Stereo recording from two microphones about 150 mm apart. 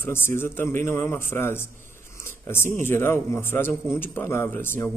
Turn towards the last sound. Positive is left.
turn(degrees=15)  # may be behind; listen again after turning